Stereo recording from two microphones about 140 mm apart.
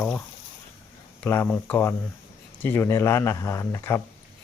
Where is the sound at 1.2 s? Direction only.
15° left (ahead or behind).